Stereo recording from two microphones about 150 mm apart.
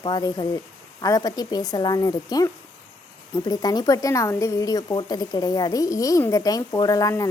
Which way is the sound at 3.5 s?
25° left (ahead or behind).